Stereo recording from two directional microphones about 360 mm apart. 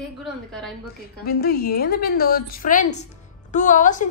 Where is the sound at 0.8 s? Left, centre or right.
Left.